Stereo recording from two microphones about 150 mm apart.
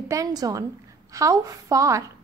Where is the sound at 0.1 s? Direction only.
25° right (ahead or behind).